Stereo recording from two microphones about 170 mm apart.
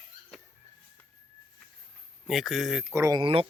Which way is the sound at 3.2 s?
30° right (ahead or behind).